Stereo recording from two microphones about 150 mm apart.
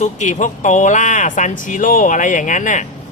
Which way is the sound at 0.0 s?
55° left (ahead or behind).